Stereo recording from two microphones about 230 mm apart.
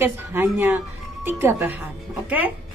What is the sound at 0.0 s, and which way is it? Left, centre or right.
Speech, centre.